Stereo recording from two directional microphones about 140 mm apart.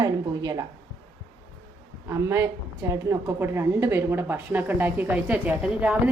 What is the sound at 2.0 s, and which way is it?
A woman's voice, 20° right (ahead or behind).